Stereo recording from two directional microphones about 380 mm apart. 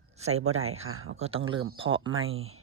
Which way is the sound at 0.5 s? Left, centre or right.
Right.